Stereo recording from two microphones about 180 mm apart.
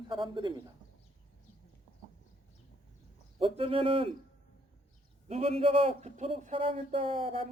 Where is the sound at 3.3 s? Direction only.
30° right (ahead or behind).